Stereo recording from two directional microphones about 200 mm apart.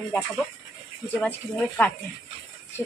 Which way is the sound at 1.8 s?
5° left (ahead or behind).